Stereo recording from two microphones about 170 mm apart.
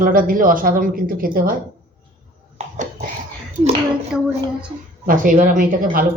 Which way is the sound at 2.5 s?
45° right (ahead or behind).